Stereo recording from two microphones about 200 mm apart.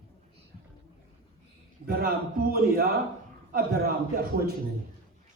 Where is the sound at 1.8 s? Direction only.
45° right (ahead or behind).